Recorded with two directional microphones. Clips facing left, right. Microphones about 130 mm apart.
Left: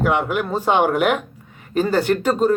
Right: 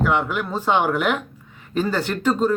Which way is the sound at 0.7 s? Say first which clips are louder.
Left 3 dB; 50° left (ahead or behind).